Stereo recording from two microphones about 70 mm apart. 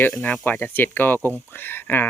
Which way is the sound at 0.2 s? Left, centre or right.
Left.